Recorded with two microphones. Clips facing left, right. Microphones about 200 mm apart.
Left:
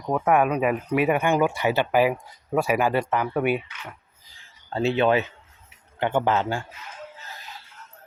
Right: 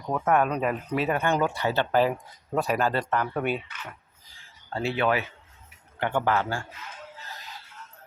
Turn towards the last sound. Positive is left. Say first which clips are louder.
# left 3 dB
turn(degrees=20)  # may be behind; listen again after turning